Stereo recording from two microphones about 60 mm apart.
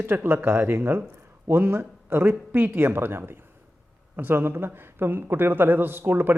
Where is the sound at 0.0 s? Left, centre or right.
Right.